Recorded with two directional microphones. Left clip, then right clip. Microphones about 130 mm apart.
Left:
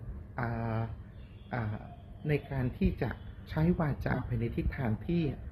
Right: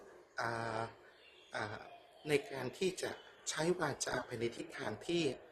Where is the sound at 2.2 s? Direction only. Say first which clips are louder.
Left 2 dB; 30° right (ahead or behind).